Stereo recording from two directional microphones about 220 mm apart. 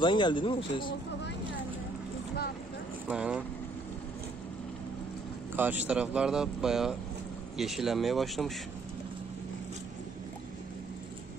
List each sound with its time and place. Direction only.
0.0 s speech: 20° left (ahead or behind)
3.1 s speech: 5° right (ahead or behind)
5.6 s speech: 5° right (ahead or behind)